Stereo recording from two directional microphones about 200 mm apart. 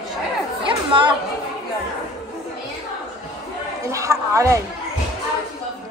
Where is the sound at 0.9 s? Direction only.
25° right (ahead or behind).